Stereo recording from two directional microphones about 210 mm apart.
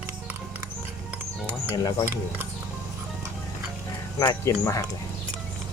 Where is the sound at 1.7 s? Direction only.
20° left (ahead or behind).